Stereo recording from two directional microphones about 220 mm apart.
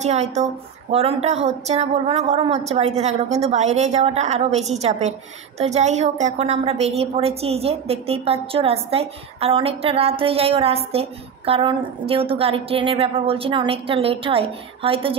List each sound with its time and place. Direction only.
0.0 s a woman's voice: 30° right (ahead or behind)